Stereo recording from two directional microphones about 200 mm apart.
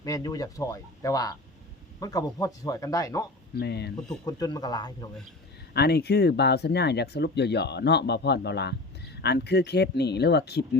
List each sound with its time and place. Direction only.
0.0 s speech: 20° left (ahead or behind)
3.5 s speech: 55° left (ahead or behind)
4.3 s speech: 20° left (ahead or behind)
5.7 s speech: 55° left (ahead or behind)